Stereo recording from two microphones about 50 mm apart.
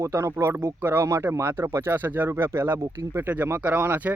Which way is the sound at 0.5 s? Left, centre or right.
Right.